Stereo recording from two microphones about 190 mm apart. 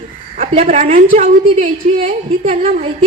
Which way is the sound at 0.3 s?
40° right (ahead or behind).